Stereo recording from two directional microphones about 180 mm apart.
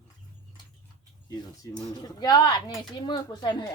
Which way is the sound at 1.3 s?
20° left (ahead or behind).